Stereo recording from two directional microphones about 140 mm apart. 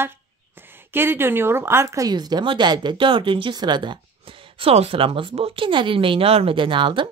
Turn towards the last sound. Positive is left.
turn(degrees=-35)  # may be behind; listen again after turning